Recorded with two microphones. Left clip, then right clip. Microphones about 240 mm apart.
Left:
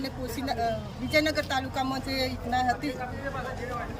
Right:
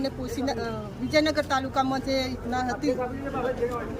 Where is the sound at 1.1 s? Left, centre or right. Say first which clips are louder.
Right 2 dB; centre.